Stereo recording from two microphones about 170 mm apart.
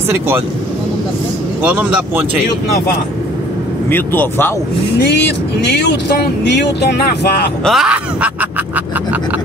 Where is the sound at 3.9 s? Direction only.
10° left (ahead or behind).